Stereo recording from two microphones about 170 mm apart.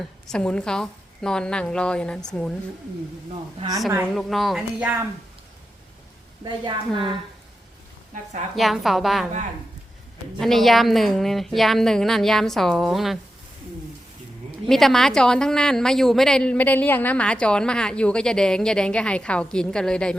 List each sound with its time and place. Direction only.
0.0 s a woman's voice: 5° left (ahead or behind)
4.1 s a woman's voice: centre (ahead or behind)
6.4 s a woman's voice: 25° right (ahead or behind)
8.5 s a woman's voice: centre (ahead or behind)
10.4 s a woman's voice: centre (ahead or behind)
14.7 s a woman's voice: centre (ahead or behind)